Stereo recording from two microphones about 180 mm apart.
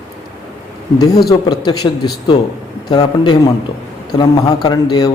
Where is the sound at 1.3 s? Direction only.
20° left (ahead or behind).